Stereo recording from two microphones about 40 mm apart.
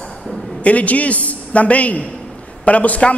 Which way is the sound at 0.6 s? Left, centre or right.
Left.